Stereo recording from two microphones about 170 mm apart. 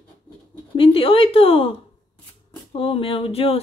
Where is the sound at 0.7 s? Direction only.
35° left (ahead or behind).